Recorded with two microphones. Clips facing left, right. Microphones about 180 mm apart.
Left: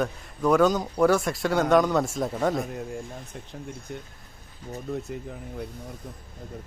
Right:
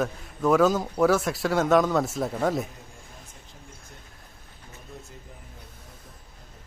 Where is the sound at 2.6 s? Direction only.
65° left (ahead or behind).